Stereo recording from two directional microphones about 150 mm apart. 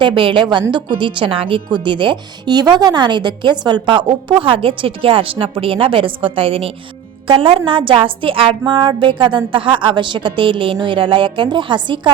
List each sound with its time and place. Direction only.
0.0 s a woman's voice: 35° right (ahead or behind)